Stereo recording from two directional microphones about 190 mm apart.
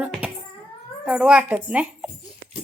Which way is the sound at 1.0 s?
5° right (ahead or behind).